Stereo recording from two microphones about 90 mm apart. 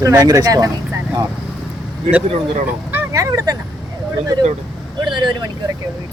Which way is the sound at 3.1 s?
40° right (ahead or behind).